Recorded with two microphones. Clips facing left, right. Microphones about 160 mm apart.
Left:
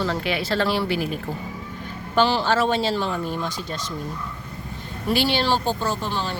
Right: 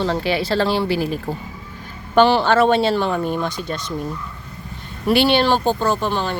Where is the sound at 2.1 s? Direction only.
60° right (ahead or behind).